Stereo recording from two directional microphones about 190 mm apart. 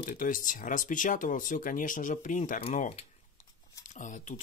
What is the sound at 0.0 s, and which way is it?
Speech, 45° left (ahead or behind).